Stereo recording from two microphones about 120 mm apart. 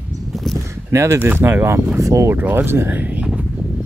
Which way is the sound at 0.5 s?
25° right (ahead or behind).